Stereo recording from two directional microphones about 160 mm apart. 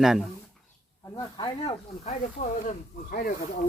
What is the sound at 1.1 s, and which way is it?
Speech, 25° left (ahead or behind).